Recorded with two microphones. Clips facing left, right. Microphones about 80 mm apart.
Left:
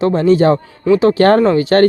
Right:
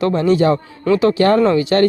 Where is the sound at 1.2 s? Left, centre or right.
Left.